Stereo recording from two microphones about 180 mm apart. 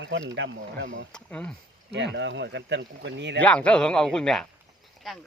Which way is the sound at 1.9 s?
80° right.